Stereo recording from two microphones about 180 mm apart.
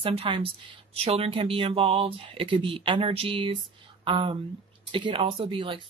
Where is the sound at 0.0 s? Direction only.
30° right (ahead or behind).